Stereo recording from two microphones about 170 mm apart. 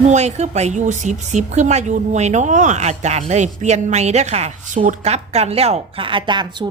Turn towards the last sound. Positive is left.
turn(degrees=-25)  # may be behind; listen again after turning